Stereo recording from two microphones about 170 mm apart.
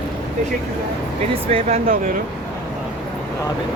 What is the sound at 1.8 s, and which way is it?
Speech, 55° right (ahead or behind).